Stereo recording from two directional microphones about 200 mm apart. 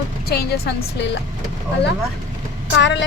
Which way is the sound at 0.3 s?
50° left (ahead or behind).